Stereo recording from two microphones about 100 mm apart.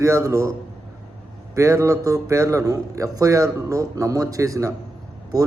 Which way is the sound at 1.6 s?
30° right (ahead or behind).